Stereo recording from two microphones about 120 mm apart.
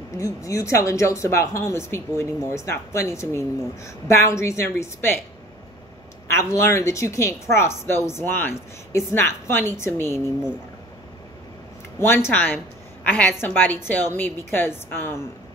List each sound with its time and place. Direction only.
0.2 s speech: 25° left (ahead or behind)
6.2 s speech: 25° left (ahead or behind)
12.0 s a woman's voice: 20° left (ahead or behind)